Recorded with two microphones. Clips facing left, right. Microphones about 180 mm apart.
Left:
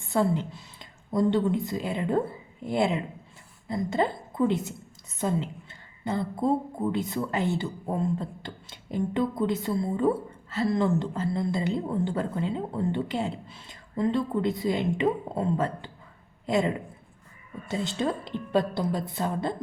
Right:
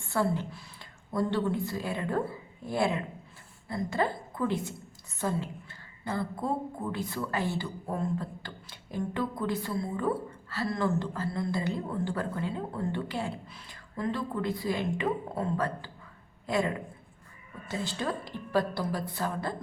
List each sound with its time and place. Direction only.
0.1 s a woman's voice: 20° left (ahead or behind)